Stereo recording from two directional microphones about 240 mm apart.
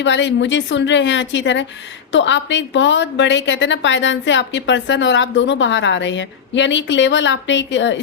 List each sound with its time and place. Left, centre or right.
0.0 s a woman's voice: left